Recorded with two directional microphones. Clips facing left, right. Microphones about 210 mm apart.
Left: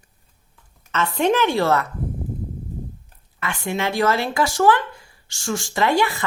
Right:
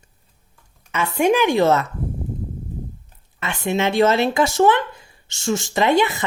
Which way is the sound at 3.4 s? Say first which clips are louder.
Right 3 dB; 25° right (ahead or behind).